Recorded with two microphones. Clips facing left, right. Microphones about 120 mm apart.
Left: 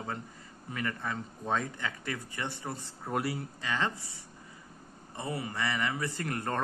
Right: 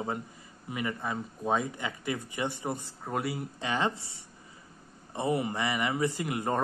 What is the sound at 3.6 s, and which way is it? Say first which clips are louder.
A man's voice: right 3 dB; 20° right (ahead or behind).